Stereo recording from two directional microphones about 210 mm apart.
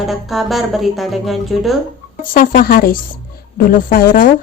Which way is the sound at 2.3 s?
40° left (ahead or behind).